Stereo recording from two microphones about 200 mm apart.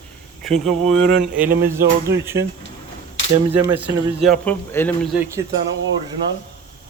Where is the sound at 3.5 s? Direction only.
10° right (ahead or behind); by 4.9 s 10° left (ahead or behind).